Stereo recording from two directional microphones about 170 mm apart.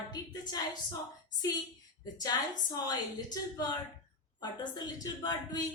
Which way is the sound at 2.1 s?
20° left (ahead or behind).